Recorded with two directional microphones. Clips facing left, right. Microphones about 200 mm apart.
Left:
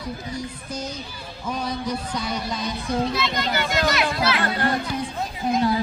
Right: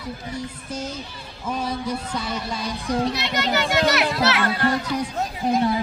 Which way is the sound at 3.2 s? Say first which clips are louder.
Right 2 dB; 70° right (ahead or behind).